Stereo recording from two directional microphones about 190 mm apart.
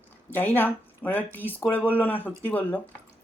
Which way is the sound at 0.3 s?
10° left (ahead or behind).